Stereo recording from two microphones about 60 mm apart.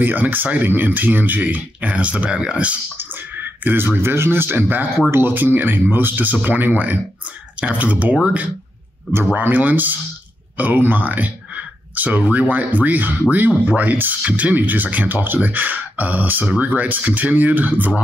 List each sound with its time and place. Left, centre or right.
0.0 s speech: right
3.0 s speech: right
9.1 s speech: right